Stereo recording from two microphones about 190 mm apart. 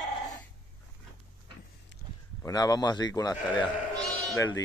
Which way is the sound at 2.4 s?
20° left (ahead or behind).